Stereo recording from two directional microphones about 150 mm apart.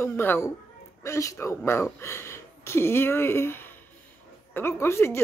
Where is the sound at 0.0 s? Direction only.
15° left (ahead or behind).